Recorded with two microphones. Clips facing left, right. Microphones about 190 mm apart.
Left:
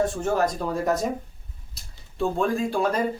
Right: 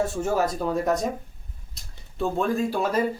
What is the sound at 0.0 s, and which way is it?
Speech, 10° right (ahead or behind).